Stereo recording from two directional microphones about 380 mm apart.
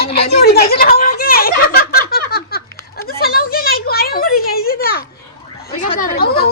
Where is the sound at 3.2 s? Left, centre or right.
Left.